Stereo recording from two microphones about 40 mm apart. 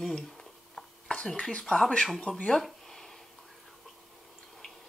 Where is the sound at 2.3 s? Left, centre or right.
Left.